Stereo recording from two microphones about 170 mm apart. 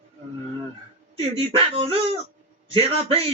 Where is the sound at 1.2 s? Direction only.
35° right (ahead or behind).